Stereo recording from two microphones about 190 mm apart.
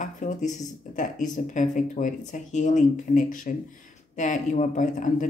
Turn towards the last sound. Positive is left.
turn(degrees=40)  # may be behind; listen again after turning